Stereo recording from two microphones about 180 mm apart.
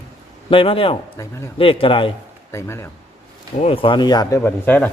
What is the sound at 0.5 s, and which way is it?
A man's voice, 30° left (ahead or behind).